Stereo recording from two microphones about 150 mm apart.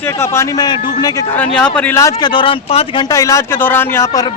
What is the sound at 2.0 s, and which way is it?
Speech, 25° left (ahead or behind).